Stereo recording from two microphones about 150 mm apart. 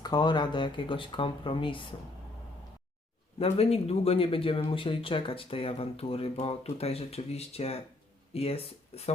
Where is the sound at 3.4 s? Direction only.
45° left (ahead or behind).